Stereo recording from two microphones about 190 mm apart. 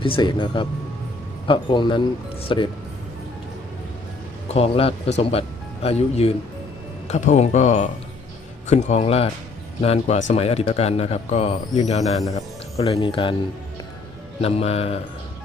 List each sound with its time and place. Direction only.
0.0 s speech: 25° left (ahead or behind)
4.4 s speech: 30° left (ahead or behind)
14.4 s speech: 35° left (ahead or behind)